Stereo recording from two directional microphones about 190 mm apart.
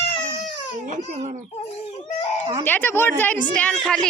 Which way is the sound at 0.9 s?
40° right (ahead or behind).